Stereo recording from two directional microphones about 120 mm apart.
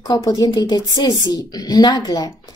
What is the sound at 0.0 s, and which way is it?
A woman's voice, 30° left (ahead or behind).